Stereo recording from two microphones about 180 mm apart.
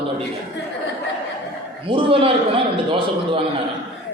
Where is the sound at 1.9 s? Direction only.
30° right (ahead or behind).